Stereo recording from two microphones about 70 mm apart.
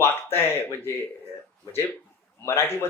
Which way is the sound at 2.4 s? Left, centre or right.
Left.